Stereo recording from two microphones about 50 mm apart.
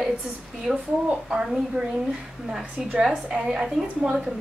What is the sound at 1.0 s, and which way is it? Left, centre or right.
Speech, right.